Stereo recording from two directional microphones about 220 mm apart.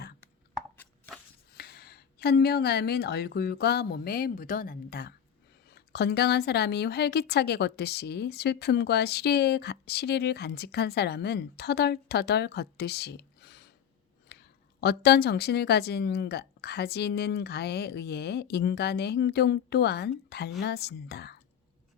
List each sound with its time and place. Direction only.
0.8 s chopping: 10° left (ahead or behind)
1.5 s speech: 45° left (ahead or behind)
14.3 s a sound: 50° left (ahead or behind)
14.8 s speech: 50° left (ahead or behind)